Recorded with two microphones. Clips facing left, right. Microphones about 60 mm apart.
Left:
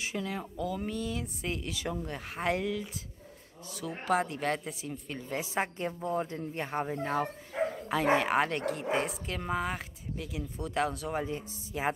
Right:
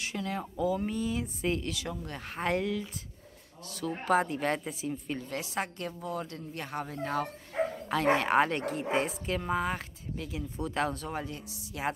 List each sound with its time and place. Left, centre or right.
0.0 s speech: centre
0.6 s speech: centre
1.7 s speech: centre
2.1 s speech: centre
5.2 s speech: centre
7.9 s speech: centre
11.2 s speech: centre